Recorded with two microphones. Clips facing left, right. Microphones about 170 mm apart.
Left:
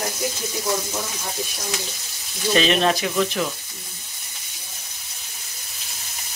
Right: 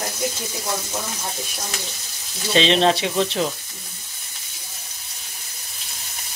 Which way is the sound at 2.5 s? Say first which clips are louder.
Right 2 dB; 30° right (ahead or behind).